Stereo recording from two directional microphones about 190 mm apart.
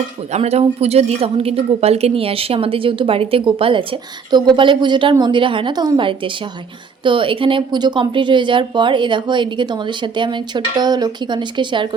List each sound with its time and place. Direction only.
0.3 s a woman's voice: 35° right (ahead or behind)